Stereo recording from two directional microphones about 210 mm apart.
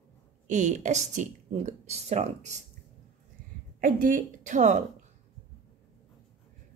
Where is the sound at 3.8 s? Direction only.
40° right (ahead or behind).